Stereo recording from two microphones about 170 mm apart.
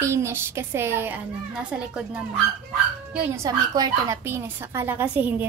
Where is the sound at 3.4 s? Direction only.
20° right (ahead or behind).